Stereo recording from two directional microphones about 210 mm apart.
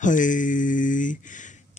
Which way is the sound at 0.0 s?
40° left (ahead or behind).